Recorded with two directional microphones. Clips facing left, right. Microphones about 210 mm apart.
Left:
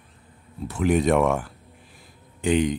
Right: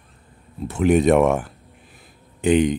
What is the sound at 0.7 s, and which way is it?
Speech, 20° right (ahead or behind).